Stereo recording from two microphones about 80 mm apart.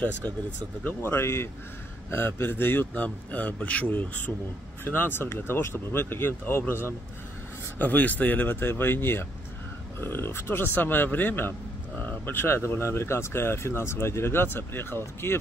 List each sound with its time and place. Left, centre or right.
0.8 s speech: left